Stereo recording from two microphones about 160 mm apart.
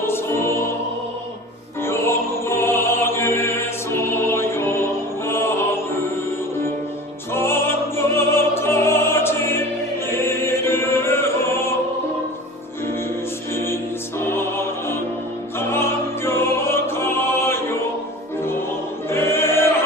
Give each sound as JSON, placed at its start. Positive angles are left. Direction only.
{"t": 0.1, "sound": "music", "side_deg": 15}
{"t": 1.8, "sound": "music", "side_deg": 15}
{"t": 7.3, "sound": "opera", "side_deg": 15}
{"t": 10.2, "sound": "music", "side_deg": 15}
{"t": 14.2, "sound": "music", "side_deg": 15}
{"t": 19.1, "sound": "choir", "side_deg": 15}